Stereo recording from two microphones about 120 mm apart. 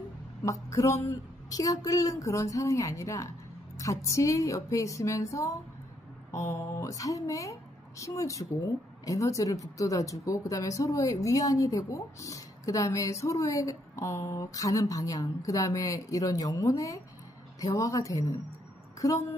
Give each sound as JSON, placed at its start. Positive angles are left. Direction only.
{"t": 0.4, "sound": "a woman's voice", "side_deg": 25}